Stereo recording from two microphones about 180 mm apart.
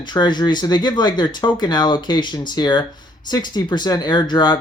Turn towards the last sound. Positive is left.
turn(degrees=25)  # may be behind; listen again after turning